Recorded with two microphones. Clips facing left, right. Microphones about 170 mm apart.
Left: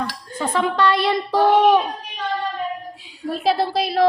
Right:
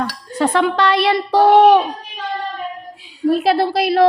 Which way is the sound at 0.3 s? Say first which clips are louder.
Right 6 dB; 75° right (ahead or behind).